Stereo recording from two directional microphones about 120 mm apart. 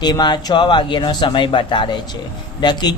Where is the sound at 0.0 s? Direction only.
35° left (ahead or behind).